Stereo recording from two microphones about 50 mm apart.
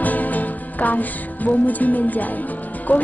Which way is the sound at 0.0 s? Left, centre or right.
Left.